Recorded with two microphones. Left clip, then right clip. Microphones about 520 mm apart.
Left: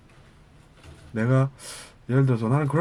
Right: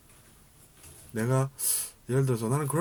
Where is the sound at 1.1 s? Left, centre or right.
Right.